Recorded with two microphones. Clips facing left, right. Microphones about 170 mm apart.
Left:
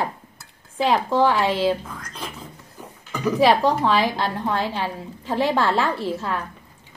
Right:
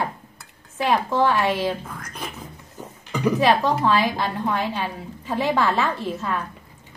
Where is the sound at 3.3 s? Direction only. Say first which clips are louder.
Left 3 dB; 10° left (ahead or behind).